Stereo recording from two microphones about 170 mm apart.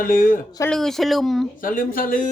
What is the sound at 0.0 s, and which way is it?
Speech, 55° left (ahead or behind).